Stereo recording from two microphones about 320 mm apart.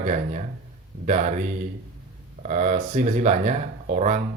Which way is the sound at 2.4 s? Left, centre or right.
Right.